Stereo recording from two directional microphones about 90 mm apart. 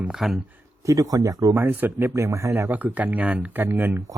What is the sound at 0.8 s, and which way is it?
Speech, 40° right (ahead or behind).